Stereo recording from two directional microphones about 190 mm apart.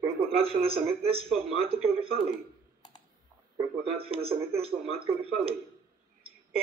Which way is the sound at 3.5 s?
30° right (ahead or behind).